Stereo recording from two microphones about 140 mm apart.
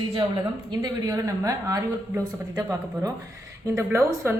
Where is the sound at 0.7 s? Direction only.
25° right (ahead or behind).